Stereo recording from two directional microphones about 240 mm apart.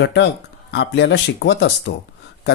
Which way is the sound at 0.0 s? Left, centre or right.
Left.